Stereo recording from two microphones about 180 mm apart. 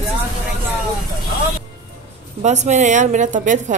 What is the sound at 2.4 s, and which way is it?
A woman's voice, 40° right (ahead or behind).